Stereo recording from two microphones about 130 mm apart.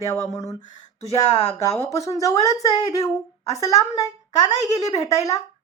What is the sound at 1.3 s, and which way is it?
Speech, 55° left (ahead or behind).